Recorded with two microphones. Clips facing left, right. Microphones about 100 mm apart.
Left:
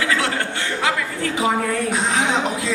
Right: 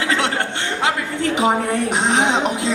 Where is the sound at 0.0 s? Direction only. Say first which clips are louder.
Right 1 dB; 25° right (ahead or behind).